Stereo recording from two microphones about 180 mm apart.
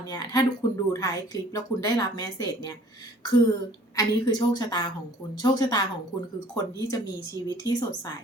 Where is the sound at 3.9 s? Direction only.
20° left (ahead or behind).